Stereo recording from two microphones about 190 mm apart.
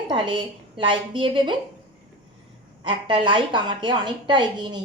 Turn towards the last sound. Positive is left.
turn(degrees=-25)  # may be behind; listen again after turning